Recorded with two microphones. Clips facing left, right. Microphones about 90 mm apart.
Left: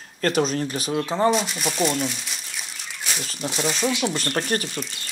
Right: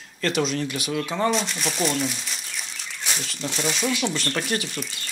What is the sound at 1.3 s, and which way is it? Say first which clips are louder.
Speech: left 3 dB; 5° left (ahead or behind).